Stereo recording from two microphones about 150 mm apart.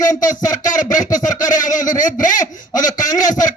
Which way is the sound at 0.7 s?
60° left (ahead or behind).